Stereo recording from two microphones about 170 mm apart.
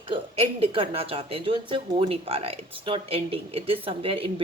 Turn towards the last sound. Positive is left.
turn(degrees=-30)  # may be behind; listen again after turning